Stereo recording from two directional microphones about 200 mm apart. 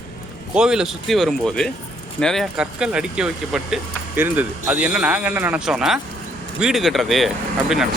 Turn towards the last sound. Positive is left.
turn(degrees=0)  # may be behind; listen again after turning